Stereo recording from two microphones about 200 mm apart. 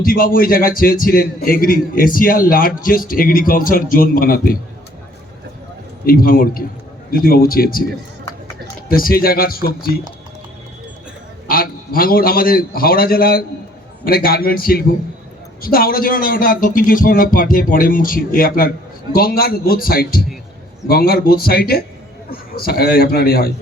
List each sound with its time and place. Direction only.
0.0 s a man's voice: 45° left (ahead or behind)
6.1 s a man's voice: 45° left (ahead or behind)
8.9 s a man's voice: 45° left (ahead or behind)
11.4 s a man's voice: 45° left (ahead or behind)